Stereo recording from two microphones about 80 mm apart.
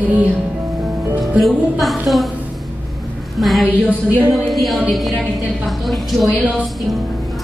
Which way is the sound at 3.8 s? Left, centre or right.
Centre.